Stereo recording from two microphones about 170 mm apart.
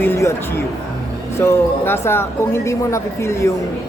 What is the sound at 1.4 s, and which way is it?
Speech, 15° left (ahead or behind).